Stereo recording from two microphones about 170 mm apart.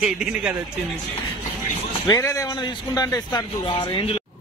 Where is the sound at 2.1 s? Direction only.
20° left (ahead or behind).